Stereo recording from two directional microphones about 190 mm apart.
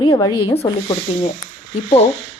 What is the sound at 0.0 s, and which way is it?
Speech, 20° left (ahead or behind).